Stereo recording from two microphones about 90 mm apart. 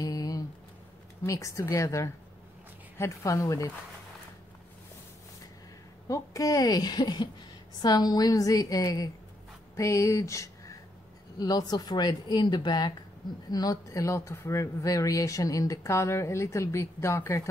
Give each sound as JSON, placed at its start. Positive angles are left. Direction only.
{"t": 0.0, "sound": "a sound", "side_deg": 40}
{"t": 1.2, "sound": "speech", "side_deg": 35}
{"t": 6.0, "sound": "speech", "side_deg": 40}
{"t": 11.3, "sound": "speech", "side_deg": 45}